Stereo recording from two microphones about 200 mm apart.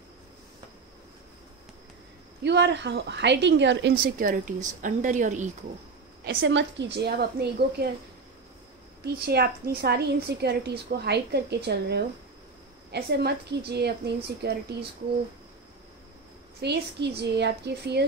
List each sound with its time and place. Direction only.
2.4 s a woman's voice: 60° right (ahead or behind)
4.0 s a woman's voice: 45° right (ahead or behind)
6.2 s a woman's voice: 60° right (ahead or behind)
9.0 s a woman's voice: 50° right (ahead or behind)
16.6 s a woman's voice: 55° right (ahead or behind)